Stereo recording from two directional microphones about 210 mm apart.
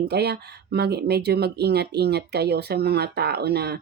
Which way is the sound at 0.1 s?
50° right (ahead or behind).